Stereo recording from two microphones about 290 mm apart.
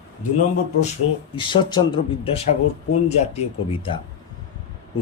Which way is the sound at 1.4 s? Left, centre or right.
Centre.